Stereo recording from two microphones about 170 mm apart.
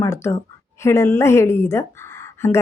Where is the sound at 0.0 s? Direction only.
15° left (ahead or behind).